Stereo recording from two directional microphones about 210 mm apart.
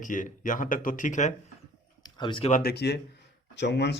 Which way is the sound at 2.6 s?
50° left (ahead or behind).